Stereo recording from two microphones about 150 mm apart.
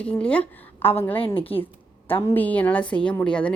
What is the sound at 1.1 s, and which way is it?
Speech, 35° left (ahead or behind).